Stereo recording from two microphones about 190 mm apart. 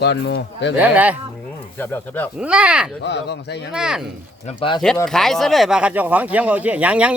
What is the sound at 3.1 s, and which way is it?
Speech, 65° left (ahead or behind).